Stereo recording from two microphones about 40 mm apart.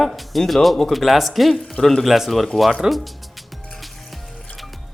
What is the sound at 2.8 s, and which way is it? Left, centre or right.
Speech, centre.